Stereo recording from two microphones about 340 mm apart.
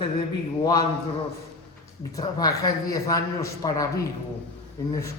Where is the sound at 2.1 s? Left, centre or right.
Centre.